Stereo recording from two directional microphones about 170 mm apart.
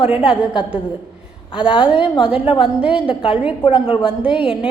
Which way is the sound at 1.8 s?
5° right (ahead or behind).